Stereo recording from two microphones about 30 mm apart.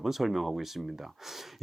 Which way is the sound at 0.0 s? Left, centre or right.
Centre.